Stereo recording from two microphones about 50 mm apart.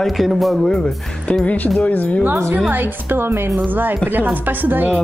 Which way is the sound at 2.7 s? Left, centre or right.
Right.